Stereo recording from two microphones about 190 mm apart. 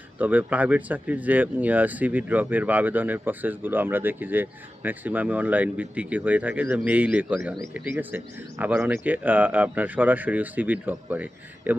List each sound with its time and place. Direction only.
0.2 s speech: 10° right (ahead or behind)